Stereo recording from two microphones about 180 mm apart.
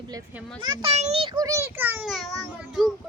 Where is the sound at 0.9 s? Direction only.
35° right (ahead or behind); by 2.0 s 10° right (ahead or behind).